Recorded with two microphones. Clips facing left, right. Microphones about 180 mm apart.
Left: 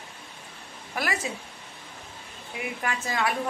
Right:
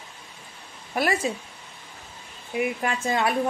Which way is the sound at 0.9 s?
25° right (ahead or behind).